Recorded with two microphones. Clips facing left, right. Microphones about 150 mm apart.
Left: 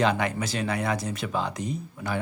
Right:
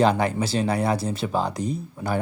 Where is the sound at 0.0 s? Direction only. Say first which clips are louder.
Right 4 dB; 35° right (ahead or behind).